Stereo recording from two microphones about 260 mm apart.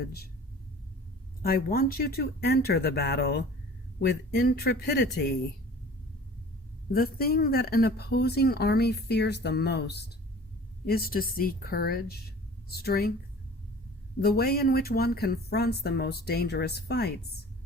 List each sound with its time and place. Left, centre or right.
1.4 s speech: left
6.9 s speech: left
14.2 s speech: left